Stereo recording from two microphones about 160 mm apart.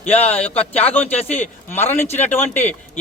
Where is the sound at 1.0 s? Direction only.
40° left (ahead or behind).